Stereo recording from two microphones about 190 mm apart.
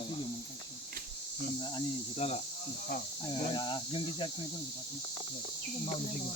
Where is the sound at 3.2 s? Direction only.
25° left (ahead or behind).